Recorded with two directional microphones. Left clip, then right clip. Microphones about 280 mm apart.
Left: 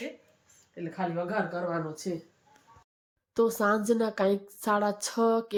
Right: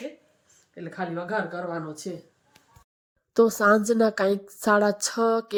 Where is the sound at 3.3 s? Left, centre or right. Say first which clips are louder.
Right 6 dB; centre.